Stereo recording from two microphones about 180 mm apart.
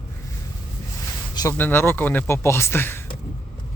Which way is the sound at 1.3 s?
20° left (ahead or behind).